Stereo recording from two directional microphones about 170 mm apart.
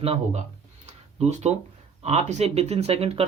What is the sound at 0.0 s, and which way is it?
Speech, 35° right (ahead or behind).